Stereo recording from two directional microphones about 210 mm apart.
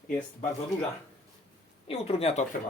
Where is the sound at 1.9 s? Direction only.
30° left (ahead or behind).